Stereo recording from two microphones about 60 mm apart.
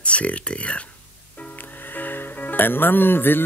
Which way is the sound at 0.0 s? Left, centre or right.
Left.